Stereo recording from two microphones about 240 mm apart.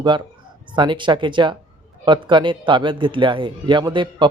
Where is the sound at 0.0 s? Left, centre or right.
Centre.